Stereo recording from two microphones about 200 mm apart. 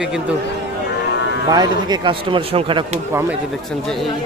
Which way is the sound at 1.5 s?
20° right (ahead or behind).